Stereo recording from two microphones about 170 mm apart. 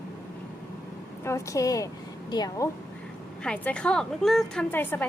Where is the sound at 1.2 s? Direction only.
15° left (ahead or behind).